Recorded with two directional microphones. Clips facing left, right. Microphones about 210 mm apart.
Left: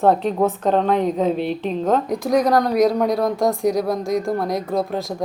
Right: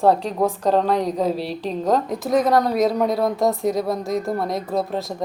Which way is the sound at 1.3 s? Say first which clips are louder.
Left 3 dB; 35° right (ahead or behind).